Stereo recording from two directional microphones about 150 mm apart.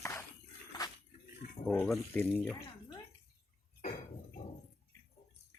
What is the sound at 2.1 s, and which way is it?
Speech, 10° left (ahead or behind).